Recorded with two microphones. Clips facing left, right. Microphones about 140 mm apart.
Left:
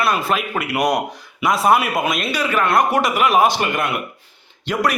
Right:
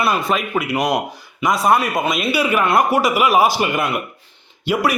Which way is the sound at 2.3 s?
15° right (ahead or behind).